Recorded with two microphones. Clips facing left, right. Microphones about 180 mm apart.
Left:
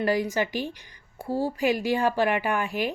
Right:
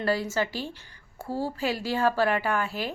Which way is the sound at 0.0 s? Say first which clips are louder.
Left 2 dB; 15° left (ahead or behind).